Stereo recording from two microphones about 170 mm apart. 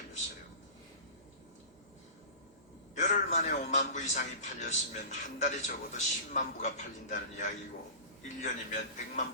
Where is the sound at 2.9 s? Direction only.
45° left (ahead or behind).